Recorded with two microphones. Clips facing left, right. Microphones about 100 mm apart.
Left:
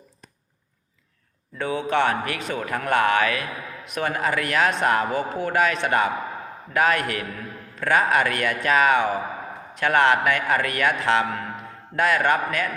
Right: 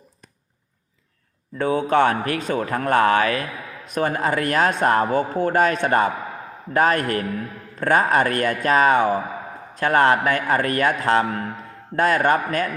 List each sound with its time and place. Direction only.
1.5 s speech: 45° right (ahead or behind)